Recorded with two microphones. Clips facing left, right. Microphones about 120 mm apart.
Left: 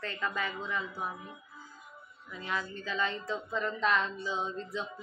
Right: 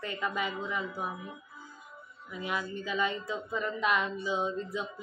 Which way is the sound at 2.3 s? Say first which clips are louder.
Right 2 dB; 15° right (ahead or behind).